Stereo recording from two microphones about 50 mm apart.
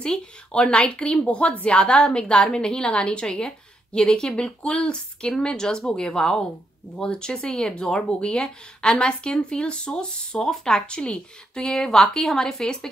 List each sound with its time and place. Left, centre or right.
0.0 s a woman's voice: centre